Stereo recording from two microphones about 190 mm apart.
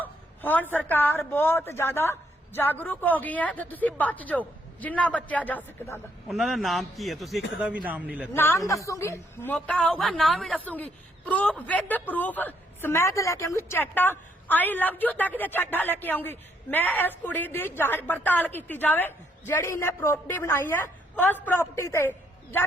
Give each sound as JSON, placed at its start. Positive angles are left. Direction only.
{"t": 0.0, "sound": "a woman's voice", "side_deg": 10}
{"t": 6.2, "sound": "a man's voice", "side_deg": 0}
{"t": 8.3, "sound": "a woman's voice", "side_deg": 15}